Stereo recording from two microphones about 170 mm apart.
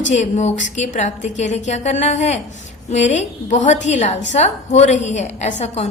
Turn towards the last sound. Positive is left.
turn(degrees=40)  # may be behind; listen again after turning